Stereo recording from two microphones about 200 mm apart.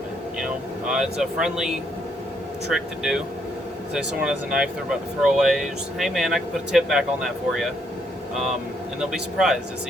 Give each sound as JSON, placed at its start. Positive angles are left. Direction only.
{"t": 0.3, "sound": "speech", "side_deg": -5}
{"t": 9.0, "sound": "speech", "side_deg": 0}